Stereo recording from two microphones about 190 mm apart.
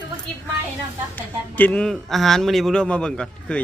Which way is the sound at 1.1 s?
10° left (ahead or behind).